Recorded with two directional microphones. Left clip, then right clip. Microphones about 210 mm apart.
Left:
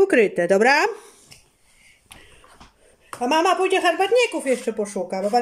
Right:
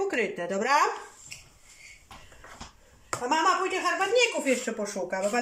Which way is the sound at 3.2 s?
50° left (ahead or behind).